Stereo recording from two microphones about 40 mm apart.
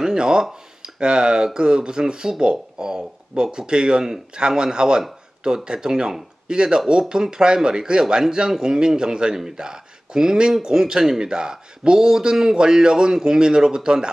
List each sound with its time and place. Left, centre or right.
0.0 s speech: centre